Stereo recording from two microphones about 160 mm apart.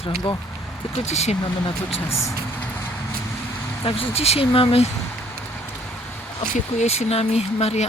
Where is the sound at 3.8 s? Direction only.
35° left (ahead or behind).